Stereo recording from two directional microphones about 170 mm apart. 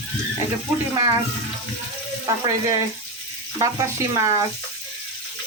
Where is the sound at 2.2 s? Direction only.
20° right (ahead or behind).